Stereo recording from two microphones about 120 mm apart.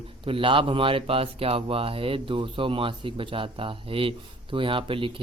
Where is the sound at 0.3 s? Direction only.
45° right (ahead or behind).